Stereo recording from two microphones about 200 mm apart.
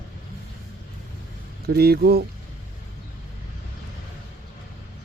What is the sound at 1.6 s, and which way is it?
Speech, 50° right (ahead or behind).